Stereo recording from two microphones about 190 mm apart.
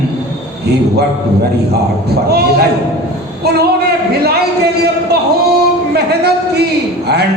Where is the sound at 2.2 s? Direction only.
55° right (ahead or behind).